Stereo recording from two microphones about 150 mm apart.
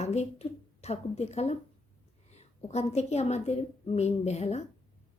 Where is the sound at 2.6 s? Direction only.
45° left (ahead or behind).